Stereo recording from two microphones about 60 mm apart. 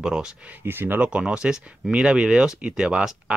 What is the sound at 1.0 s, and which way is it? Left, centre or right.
Speech, centre.